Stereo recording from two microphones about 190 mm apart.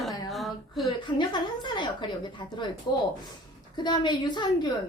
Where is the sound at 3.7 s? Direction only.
25° left (ahead or behind).